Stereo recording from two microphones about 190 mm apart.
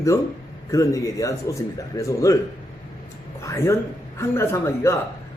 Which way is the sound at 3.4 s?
15° left (ahead or behind).